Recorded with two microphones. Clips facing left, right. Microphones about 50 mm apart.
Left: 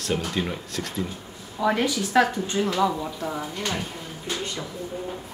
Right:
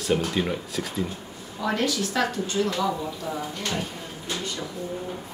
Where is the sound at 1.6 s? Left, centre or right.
Centre.